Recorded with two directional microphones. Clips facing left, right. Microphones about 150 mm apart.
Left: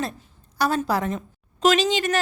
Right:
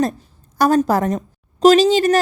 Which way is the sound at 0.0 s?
45° right (ahead or behind).